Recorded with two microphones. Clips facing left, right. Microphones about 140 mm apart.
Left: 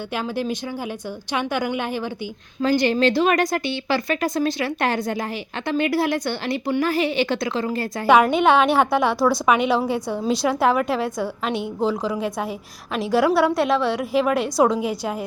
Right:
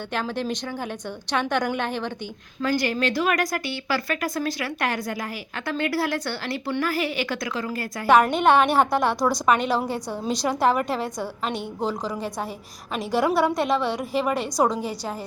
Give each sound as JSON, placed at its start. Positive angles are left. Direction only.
{"t": 0.1, "sound": "a woman's voice", "side_deg": 10}
{"t": 2.6, "sound": "speech", "side_deg": 25}
{"t": 8.0, "sound": "a woman's voice", "side_deg": 5}
{"t": 9.1, "sound": "a woman's voice", "side_deg": -15}
{"t": 9.5, "sound": "a woman's voice", "side_deg": 5}